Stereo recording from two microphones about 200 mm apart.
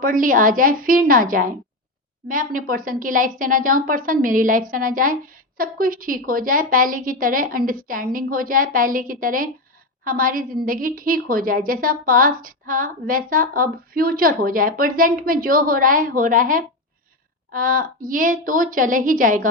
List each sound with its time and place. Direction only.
0.0 s a woman's voice: 45° right (ahead or behind)